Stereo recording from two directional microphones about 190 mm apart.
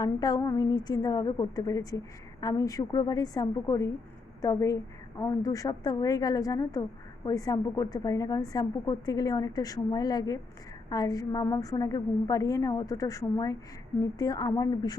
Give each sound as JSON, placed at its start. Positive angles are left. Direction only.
{"t": 0.0, "sound": "a woman's voice", "side_deg": 20}